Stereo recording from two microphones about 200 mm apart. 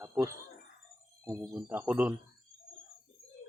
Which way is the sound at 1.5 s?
10° right (ahead or behind).